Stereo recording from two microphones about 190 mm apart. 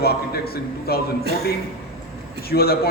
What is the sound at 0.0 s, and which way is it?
A man's voice, 55° left (ahead or behind).